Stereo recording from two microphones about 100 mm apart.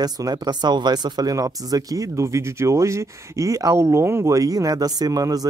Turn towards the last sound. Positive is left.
turn(degrees=-40)  # may be behind; listen again after turning